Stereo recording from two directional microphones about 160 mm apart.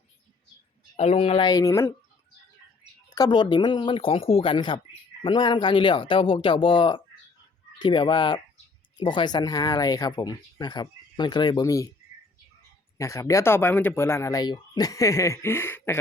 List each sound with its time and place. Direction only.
0.9 s speech: 40° left (ahead or behind)
1.5 s speech: 20° left (ahead or behind)
3.1 s speech: 25° left (ahead or behind)
13.0 s speech: 20° left (ahead or behind)